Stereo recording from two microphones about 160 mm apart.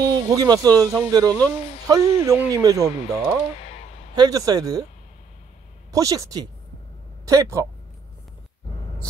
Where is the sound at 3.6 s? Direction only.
40° left (ahead or behind).